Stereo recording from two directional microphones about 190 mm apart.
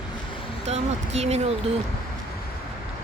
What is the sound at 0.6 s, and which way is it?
Speech, 35° right (ahead or behind).